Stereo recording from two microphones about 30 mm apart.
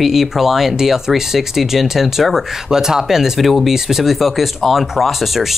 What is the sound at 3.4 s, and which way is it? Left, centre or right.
Speech, centre.